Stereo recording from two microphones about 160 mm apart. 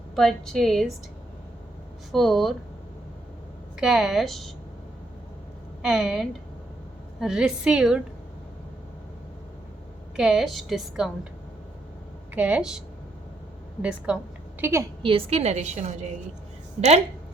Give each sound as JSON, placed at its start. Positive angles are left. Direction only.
{"t": 0.2, "sound": "a woman's voice", "side_deg": 0}
{"t": 2.1, "sound": "a woman's voice", "side_deg": 0}
{"t": 3.8, "sound": "a woman's voice", "side_deg": -5}
{"t": 5.8, "sound": "a woman's voice", "side_deg": -5}
{"t": 10.2, "sound": "a woman's voice", "side_deg": -5}
{"t": 12.3, "sound": "a woman's voice", "side_deg": -10}
{"t": 14.1, "sound": "a woman's voice", "side_deg": -5}
{"t": 15.0, "sound": "a woman's voice", "side_deg": -35}